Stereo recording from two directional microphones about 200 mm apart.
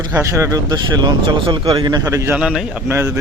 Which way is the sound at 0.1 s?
15° right (ahead or behind).